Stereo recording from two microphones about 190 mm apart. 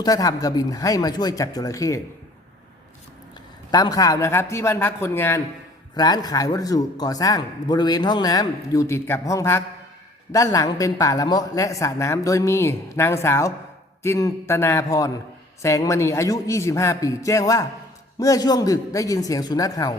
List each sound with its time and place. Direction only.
0.0 s a man's voice: 20° left (ahead or behind)
3.7 s a man's voice: 20° left (ahead or behind)